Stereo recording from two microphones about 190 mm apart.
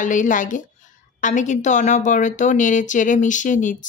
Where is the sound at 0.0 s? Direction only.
40° left (ahead or behind).